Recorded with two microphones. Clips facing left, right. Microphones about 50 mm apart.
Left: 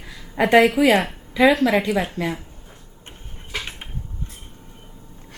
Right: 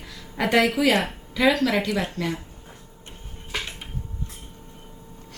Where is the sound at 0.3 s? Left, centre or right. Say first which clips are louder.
Left 6 dB; left.